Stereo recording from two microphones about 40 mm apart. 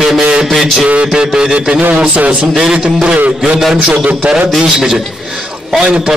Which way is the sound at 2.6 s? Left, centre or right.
Right.